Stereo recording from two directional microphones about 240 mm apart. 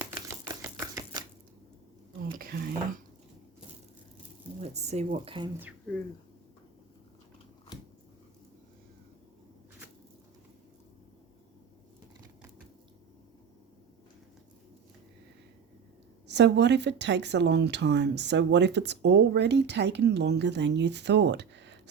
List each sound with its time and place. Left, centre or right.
0.0 s typewriter: centre
2.3 s speech: right
4.6 s speech: right
16.2 s a woman's voice: right